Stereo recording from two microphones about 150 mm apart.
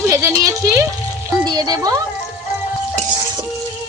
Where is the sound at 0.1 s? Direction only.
20° right (ahead or behind).